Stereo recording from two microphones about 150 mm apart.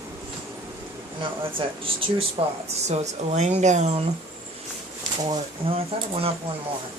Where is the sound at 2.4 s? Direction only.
35° right (ahead or behind).